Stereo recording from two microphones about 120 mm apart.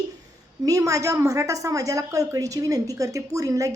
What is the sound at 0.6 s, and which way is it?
A woman's voice, 30° right (ahead or behind).